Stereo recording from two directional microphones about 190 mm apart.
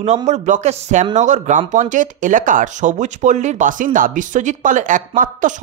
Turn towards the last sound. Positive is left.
turn(degrees=-45)  # may be behind; listen again after turning